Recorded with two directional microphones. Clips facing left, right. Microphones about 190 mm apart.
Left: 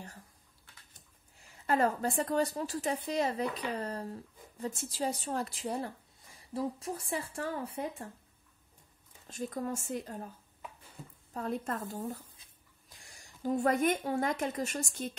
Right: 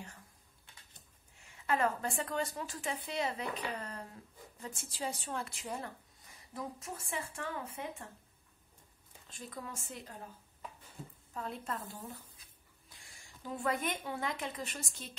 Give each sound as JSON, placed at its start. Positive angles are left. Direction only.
{"t": 1.3, "sound": "a woman's voice", "side_deg": 35}
{"t": 9.3, "sound": "a woman's voice", "side_deg": 45}
{"t": 11.3, "sound": "a woman's voice", "side_deg": 45}